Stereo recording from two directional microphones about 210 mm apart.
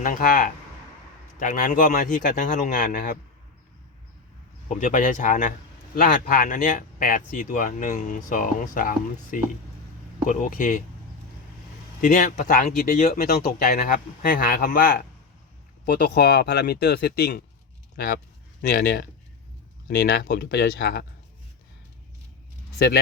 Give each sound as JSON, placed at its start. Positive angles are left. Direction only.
{"t": 0.0, "sound": "a man's voice", "side_deg": 40}
{"t": 4.7, "sound": "a man's voice", "side_deg": 35}
{"t": 11.9, "sound": "a man's voice", "side_deg": 40}